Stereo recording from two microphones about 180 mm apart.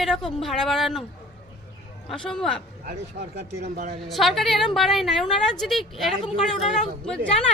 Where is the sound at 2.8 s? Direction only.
60° right (ahead or behind).